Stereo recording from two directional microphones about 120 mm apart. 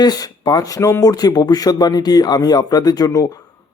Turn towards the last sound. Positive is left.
turn(degrees=25)  # may be behind; listen again after turning